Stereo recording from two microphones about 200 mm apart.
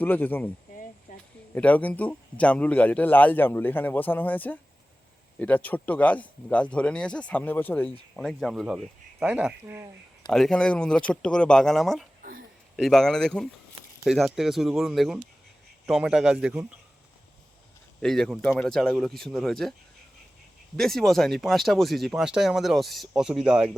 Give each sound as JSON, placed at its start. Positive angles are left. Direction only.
{"t": 0.0, "sound": "speech", "side_deg": 10}
{"t": 1.1, "sound": "a sound", "side_deg": 40}
{"t": 1.5, "sound": "speech", "side_deg": 10}
{"t": 10.2, "sound": "speech", "side_deg": 0}
{"t": 18.0, "sound": "speech", "side_deg": 0}
{"t": 20.7, "sound": "speech", "side_deg": 0}